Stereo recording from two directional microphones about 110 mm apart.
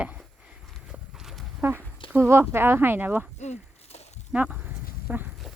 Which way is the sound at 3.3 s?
90° left.